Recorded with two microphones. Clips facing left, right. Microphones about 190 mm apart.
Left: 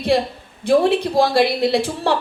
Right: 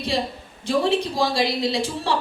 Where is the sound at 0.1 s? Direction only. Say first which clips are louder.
Left 6 dB; 60° left (ahead or behind).